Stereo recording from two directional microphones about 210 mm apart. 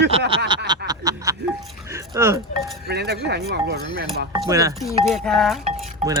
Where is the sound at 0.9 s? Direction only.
15° right (ahead or behind).